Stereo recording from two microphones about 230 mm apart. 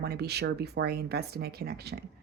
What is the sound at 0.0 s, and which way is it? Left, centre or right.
Speech, right.